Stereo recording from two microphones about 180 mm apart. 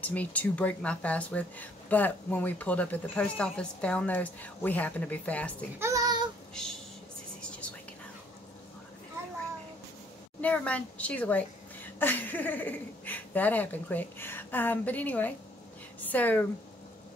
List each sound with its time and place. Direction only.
0.0 s speech: 10° left (ahead or behind)
5.8 s child singing: 15° right (ahead or behind)
10.4 s speech: 5° left (ahead or behind)